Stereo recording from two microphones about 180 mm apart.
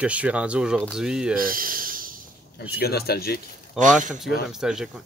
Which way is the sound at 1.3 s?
50° right (ahead or behind).